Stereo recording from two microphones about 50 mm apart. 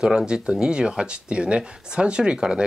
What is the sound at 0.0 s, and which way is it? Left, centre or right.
Speech, centre.